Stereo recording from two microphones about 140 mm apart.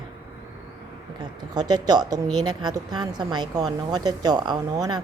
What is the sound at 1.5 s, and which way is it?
A woman's voice, 25° right (ahead or behind).